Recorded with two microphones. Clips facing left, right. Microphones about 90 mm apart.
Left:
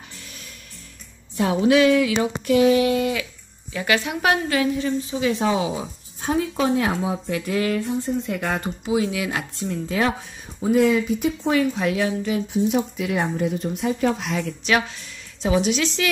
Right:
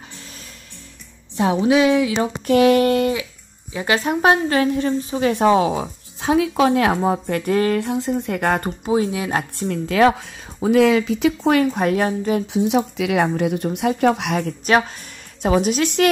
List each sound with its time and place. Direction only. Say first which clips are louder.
1.3 s speech: right 1 dB; 25° right (ahead or behind)
2.6 s speech: right 3 dB; 55° right (ahead or behind)
3.7 s a woman's voice: right 3 dB; 30° right (ahead or behind)
4.7 s a woman's voice: right 3 dB; 45° right (ahead or behind)
7.8 s speech: right 3 dB; 70° right (ahead or behind); by 8.9 s 50° right (ahead or behind)
8.9 s a woman's voice: right 3 dB; 35° right (ahead or behind)
9.6 s speech: right 7 dB; 75° right (ahead or behind)
10.6 s speech: right 3 dB; 90° right
11.7 s a woman's voice: right 3 dB; 45° right (ahead or behind)
12.5 s speech: right 1 dB; 85° right; by 14.4 s 65° right (ahead or behind)
14.4 s a woman's voice: right 4 dB; 40° right (ahead or behind)